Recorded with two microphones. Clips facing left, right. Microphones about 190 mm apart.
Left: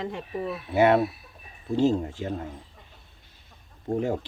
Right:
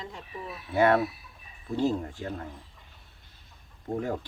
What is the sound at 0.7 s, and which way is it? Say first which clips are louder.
Speech: left 3 dB; 20° left (ahead or behind).